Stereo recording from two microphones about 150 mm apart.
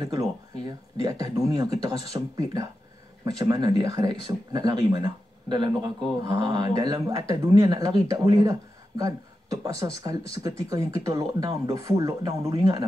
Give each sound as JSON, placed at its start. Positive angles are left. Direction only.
{"t": 1.0, "sound": "speech", "side_deg": -25}